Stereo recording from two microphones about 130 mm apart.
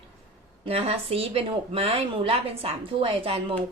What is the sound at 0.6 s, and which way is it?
Speech, 50° right (ahead or behind).